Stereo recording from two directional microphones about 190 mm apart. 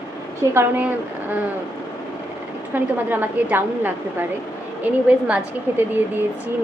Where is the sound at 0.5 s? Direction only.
10° right (ahead or behind).